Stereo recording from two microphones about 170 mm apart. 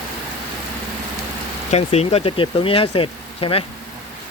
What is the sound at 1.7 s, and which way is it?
Speech, 40° left (ahead or behind).